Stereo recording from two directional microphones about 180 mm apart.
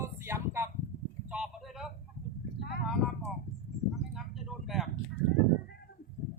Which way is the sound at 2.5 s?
65° left (ahead or behind).